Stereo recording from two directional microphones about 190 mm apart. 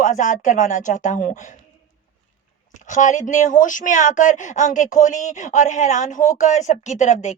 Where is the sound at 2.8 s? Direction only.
40° left (ahead or behind).